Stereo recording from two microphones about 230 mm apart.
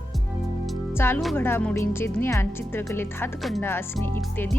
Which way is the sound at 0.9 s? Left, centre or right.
Centre.